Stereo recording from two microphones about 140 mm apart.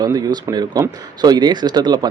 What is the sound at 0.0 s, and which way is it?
Speech, 30° right (ahead or behind).